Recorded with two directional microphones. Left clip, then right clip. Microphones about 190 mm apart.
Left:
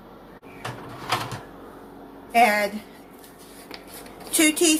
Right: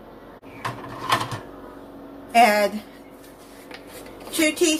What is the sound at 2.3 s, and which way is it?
Speech, centre (ahead or behind).